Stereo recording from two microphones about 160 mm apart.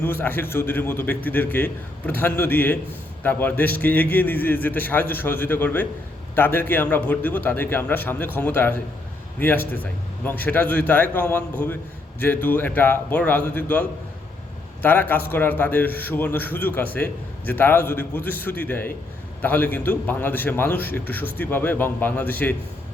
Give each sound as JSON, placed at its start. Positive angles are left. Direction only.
{"t": 0.0, "sound": "a man's voice", "side_deg": 10}